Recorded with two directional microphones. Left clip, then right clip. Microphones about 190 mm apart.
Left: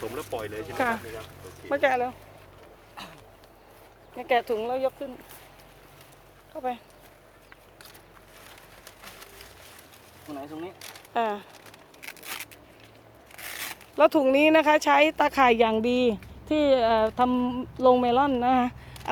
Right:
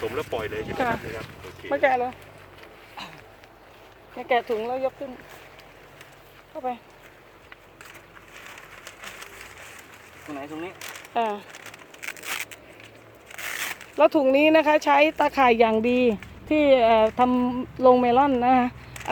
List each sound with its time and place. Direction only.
0.2 s speech: 20° right (ahead or behind)
1.7 s speech: 10° left (ahead or behind)
3.0 s a sound: 40° left (ahead or behind)
4.2 s speech: 10° left (ahead or behind)
10.2 s speech: 5° left (ahead or behind)
12.0 s a sound: 10° left (ahead or behind)
13.4 s speech: 5° left (ahead or behind)